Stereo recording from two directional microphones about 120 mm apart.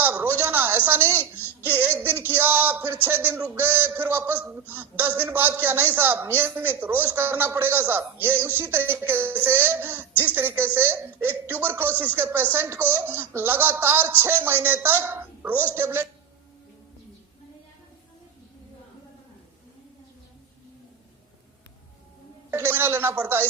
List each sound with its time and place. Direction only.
0.0 s a sound: 15° right (ahead or behind)
3.1 s speech: 15° right (ahead or behind)
22.4 s speech: 15° right (ahead or behind)